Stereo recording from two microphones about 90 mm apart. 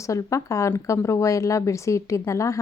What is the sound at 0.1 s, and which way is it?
Speech, 35° left (ahead or behind).